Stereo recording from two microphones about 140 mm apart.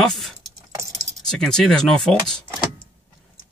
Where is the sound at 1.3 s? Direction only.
5° left (ahead or behind).